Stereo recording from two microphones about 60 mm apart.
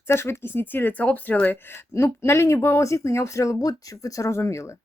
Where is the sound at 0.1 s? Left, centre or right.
Left.